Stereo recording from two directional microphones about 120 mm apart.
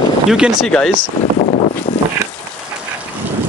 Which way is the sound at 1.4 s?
75° left (ahead or behind).